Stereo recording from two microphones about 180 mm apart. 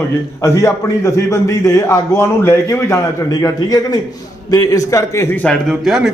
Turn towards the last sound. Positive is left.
turn(degrees=0)  # may be behind; listen again after turning